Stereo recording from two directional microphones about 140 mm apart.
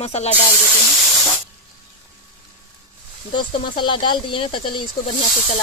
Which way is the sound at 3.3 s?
35° left (ahead or behind).